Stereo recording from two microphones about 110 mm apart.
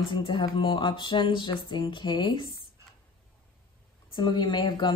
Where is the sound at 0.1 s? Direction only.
50° left (ahead or behind).